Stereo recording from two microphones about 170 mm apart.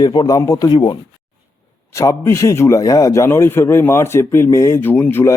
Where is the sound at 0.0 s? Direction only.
25° left (ahead or behind).